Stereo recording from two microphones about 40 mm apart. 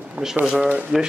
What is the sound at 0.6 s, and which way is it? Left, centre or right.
Speech, right.